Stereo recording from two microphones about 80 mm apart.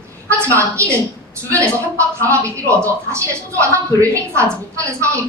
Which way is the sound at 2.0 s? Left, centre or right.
Right.